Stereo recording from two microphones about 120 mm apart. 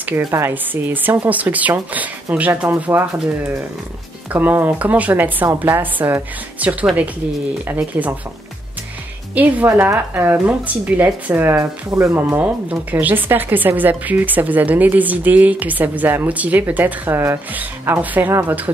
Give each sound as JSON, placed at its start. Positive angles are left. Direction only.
{"t": 0.3, "sound": "speech", "side_deg": -20}
{"t": 9.3, "sound": "speech", "side_deg": -15}